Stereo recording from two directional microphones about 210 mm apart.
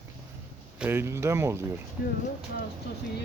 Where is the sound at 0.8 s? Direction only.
10° right (ahead or behind).